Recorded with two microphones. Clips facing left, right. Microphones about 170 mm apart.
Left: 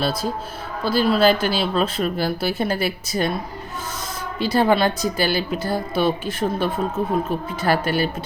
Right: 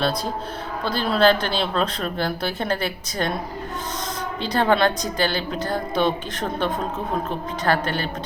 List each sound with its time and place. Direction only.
0.0 s a woman's voice: 5° left (ahead or behind)
4.4 s a woman's voice: 10° left (ahead or behind)